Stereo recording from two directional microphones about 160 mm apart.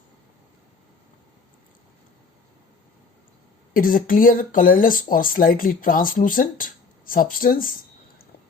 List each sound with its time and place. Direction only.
3.8 s speech: 60° left (ahead or behind)